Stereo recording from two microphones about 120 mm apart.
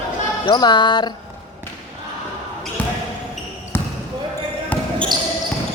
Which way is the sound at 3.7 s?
20° left (ahead or behind).